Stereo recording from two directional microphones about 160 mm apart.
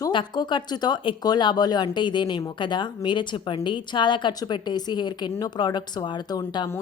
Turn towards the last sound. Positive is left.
turn(degrees=25)  # may be behind; listen again after turning